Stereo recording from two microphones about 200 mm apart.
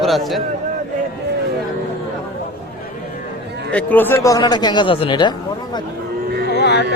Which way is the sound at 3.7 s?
5° left (ahead or behind).